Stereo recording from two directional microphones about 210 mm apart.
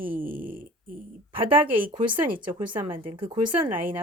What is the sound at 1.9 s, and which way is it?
Speech, 25° right (ahead or behind).